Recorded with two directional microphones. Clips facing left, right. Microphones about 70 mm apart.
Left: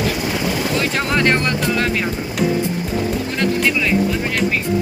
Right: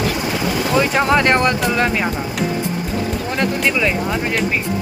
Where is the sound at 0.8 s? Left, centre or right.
Centre.